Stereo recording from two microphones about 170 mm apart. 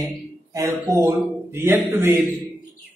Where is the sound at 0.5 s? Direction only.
20° right (ahead or behind).